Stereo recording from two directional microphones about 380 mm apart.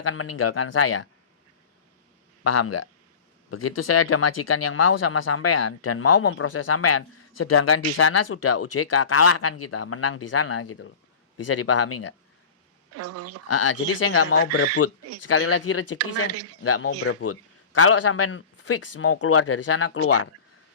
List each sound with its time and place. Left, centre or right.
0.0 s speech: left
2.4 s speech: left
12.9 s speech: right
13.5 s speech: left
16.0 s speech: right
16.6 s speech: left